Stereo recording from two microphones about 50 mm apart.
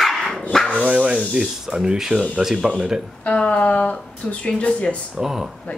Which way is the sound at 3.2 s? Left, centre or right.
Left.